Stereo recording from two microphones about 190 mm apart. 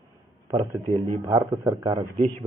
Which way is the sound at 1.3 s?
20° right (ahead or behind).